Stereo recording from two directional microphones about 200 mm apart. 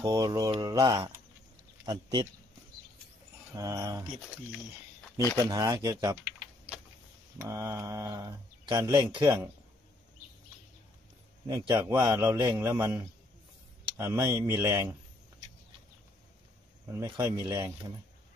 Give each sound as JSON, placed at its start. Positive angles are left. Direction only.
{"t": 0.0, "sound": "speech", "side_deg": -20}
{"t": 3.5, "sound": "speech", "side_deg": -15}
{"t": 5.4, "sound": "speech", "side_deg": -15}
{"t": 7.3, "sound": "speech", "side_deg": -15}
{"t": 11.4, "sound": "speech", "side_deg": -20}
{"t": 16.8, "sound": "speech", "side_deg": -15}